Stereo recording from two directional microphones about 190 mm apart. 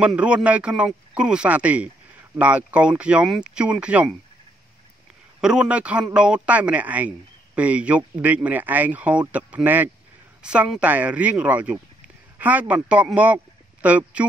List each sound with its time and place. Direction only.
0.0 s a man's voice: 5° right (ahead or behind)
5.4 s a man's voice: 5° right (ahead or behind)